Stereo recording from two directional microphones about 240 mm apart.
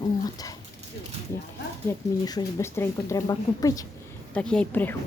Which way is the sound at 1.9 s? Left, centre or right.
Centre.